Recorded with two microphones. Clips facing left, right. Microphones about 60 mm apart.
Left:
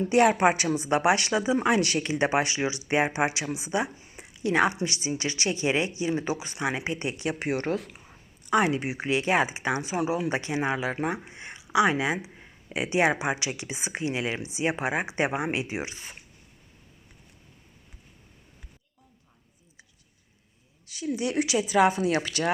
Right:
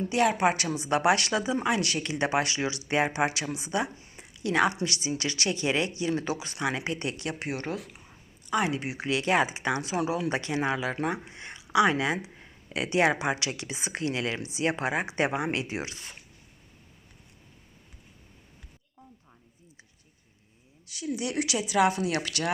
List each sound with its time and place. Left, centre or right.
0.3 s speech: centre
2.0 s speech: centre
4.4 s speech: centre
8.0 s a sound: centre
8.7 s speech: centre
9.0 s speech: centre
20.8 s speech: centre